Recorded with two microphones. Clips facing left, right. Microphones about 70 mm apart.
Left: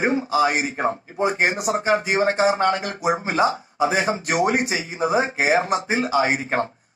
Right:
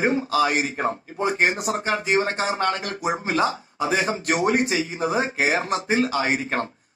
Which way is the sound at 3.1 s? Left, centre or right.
Left.